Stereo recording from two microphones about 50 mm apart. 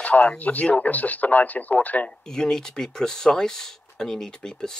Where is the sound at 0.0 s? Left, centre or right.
Left.